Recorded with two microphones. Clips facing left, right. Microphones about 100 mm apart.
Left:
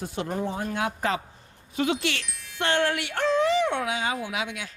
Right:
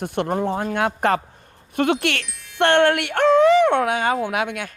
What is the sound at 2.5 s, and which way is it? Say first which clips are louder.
Speech: right 9 dB; 60° right (ahead or behind).